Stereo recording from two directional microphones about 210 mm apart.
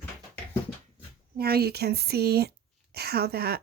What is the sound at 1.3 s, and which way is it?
A woman's voice, 50° right (ahead or behind).